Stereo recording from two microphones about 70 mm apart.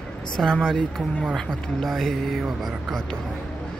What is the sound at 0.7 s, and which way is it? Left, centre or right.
Speech, centre.